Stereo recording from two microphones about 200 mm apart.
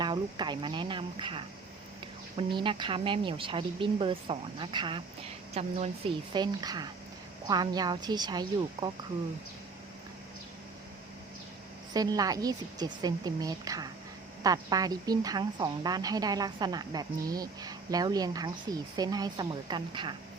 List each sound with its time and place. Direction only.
0.0 s a woman's voice: 20° right (ahead or behind)
11.9 s a woman's voice: 20° right (ahead or behind)